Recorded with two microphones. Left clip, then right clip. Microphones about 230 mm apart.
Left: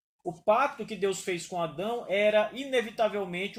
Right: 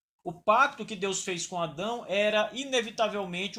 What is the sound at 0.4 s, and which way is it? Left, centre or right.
Speech, right.